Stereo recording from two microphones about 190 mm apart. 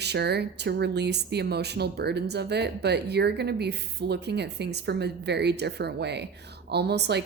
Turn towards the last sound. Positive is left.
turn(degrees=-60)  # may be behind; listen again after turning